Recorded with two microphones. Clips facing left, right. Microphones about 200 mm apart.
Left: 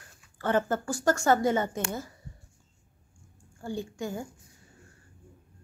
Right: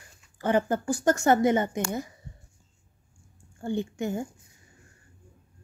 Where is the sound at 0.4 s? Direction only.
15° right (ahead or behind).